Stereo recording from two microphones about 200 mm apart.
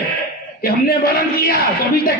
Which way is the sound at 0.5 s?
50° left (ahead or behind).